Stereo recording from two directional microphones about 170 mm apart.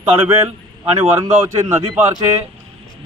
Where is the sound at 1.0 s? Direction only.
15° right (ahead or behind).